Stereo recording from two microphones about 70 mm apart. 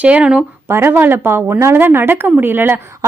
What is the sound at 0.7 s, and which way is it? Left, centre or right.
A woman's voice, right.